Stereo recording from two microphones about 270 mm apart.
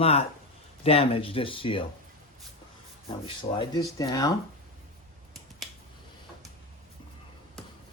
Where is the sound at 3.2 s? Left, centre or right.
Centre.